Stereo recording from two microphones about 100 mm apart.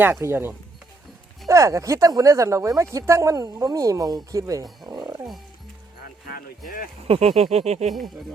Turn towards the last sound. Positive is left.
turn(degrees=-90)